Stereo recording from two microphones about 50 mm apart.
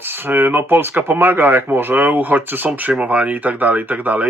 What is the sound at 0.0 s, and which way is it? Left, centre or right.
Speech, right.